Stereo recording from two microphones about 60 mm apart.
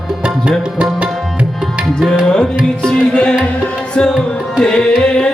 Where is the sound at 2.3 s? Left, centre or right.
Centre.